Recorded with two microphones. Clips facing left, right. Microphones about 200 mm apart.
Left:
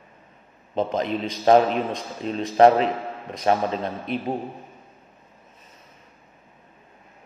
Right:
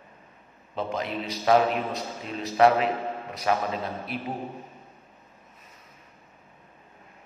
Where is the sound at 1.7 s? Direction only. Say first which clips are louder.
Left 3 dB; 5° right (ahead or behind).